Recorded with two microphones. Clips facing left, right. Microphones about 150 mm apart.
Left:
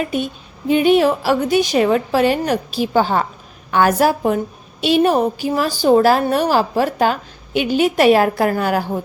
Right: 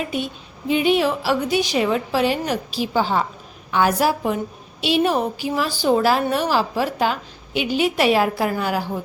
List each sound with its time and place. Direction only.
0.7 s a woman's voice: 50° left (ahead or behind)